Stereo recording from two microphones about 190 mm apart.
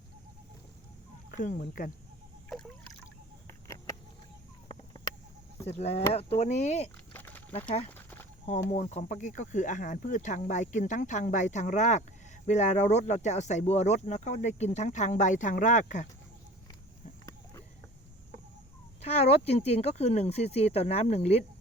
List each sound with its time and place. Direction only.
1.3 s speech: 45° left (ahead or behind)
5.6 s speech: 35° left (ahead or behind)
7.1 s a sound: 10° left (ahead or behind)
8.7 s speech: 40° left (ahead or behind)
19.0 s speech: 35° left (ahead or behind)